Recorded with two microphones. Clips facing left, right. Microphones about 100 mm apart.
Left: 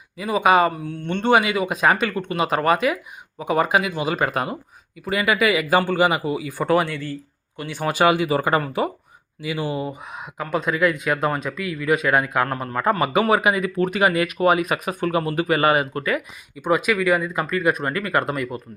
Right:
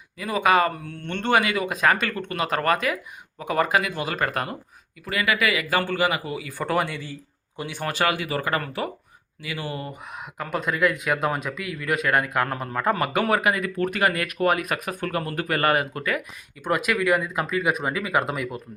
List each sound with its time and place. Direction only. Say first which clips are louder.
0.2 s speech: left 3 dB; 15° left (ahead or behind)
5.0 s speech: left 4 dB; 25° left (ahead or behind)
6.6 s speech: left 4 dB; centre (ahead or behind)
7.8 s speech: left 7 dB; 15° left (ahead or behind)
10.2 s speech: left 3 dB; 5° left (ahead or behind)